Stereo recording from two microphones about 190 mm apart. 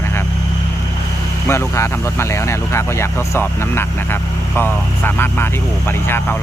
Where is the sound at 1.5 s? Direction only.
15° left (ahead or behind).